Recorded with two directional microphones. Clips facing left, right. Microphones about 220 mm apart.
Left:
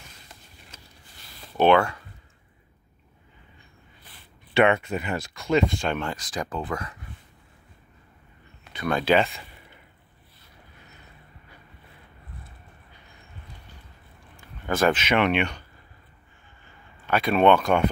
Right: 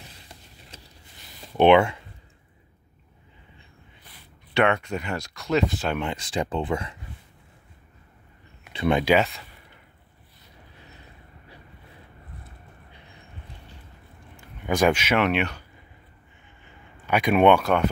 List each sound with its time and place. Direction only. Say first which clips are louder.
0.0 s vehicle: right 3 dB; 30° right (ahead or behind)
1.4 s speech: right 3 dB; 20° right (ahead or behind)
4.6 s speech: left 2 dB; 5° left (ahead or behind)
5.9 s speech: right 3 dB; 25° right (ahead or behind)
8.7 s speech: right 4 dB; 25° right (ahead or behind)
9.0 s speech: even; 5° right (ahead or behind)
14.3 s speech: right 2 dB; 15° right (ahead or behind)
17.0 s speech: right 1 dB; 15° right (ahead or behind)